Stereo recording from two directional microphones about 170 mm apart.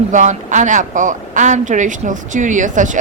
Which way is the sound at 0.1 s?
45° right (ahead or behind).